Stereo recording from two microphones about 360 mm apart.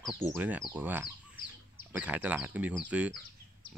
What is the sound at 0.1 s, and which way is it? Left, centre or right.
Speech, centre.